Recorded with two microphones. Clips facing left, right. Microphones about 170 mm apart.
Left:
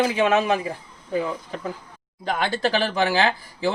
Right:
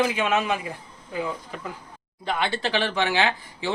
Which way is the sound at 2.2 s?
40° left (ahead or behind).